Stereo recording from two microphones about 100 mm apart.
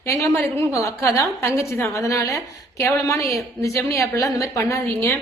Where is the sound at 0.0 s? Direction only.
30° left (ahead or behind).